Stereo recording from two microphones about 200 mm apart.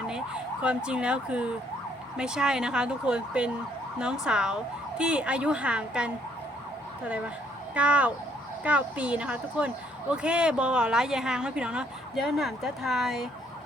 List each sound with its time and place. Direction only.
0.6 s a woman's voice: 5° right (ahead or behind)
7.8 s a woman's voice: 5° right (ahead or behind)